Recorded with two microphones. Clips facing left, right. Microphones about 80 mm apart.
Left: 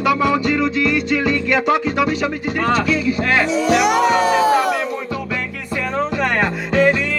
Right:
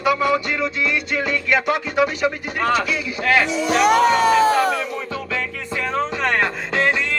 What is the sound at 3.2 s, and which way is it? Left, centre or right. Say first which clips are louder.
Speech: left 1 dB; left.